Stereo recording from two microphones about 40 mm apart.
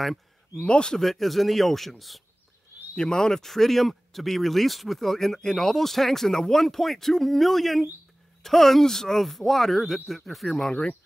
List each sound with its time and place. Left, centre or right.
0.6 s speech: left
0.9 s speech: centre
3.0 s speech: centre